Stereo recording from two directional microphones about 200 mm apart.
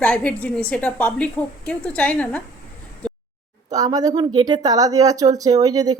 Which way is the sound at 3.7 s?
20° right (ahead or behind).